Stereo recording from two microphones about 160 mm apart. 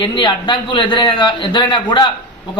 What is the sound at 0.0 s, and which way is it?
A man's voice, 30° left (ahead or behind).